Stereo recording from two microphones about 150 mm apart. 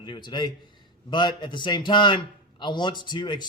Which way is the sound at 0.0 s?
30° left (ahead or behind).